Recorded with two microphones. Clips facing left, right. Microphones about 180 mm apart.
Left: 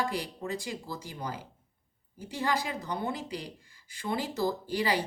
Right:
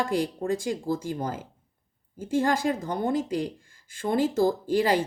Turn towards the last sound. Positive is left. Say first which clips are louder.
# right 7 dB
turn(degrees=-50)  # may be behind; listen again after turning